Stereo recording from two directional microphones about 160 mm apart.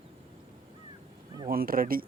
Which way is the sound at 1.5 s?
65° right (ahead or behind).